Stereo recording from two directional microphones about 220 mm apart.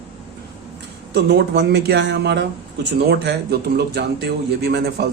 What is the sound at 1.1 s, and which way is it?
A man's voice, 50° right (ahead or behind).